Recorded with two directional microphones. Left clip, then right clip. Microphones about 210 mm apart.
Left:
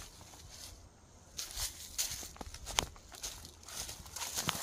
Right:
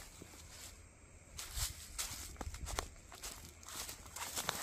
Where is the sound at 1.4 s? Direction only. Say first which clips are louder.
Left 6 dB; 5° right (ahead or behind).